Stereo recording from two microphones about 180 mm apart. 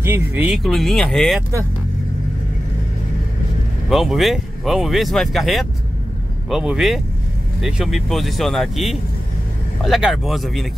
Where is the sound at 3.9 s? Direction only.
Centre (ahead or behind).